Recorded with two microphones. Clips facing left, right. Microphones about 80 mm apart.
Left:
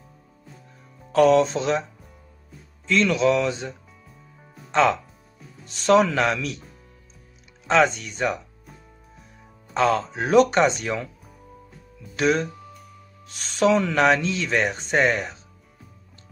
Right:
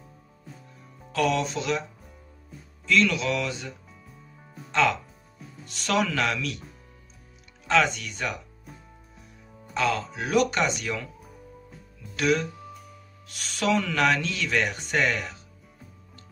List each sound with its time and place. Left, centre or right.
1.1 s speech: left
2.9 s speech: left
4.1 s music: centre
5.7 s speech: left
7.6 s speech: left
9.8 s speech: left
12.2 s speech: left